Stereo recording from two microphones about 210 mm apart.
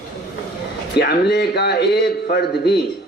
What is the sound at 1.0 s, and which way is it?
A man's voice, 50° left (ahead or behind).